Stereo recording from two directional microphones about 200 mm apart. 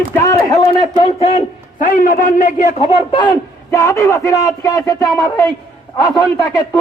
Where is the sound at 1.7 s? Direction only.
40° left (ahead or behind).